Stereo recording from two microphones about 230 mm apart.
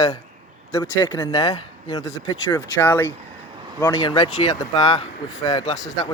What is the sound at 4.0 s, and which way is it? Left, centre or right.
Speech, left.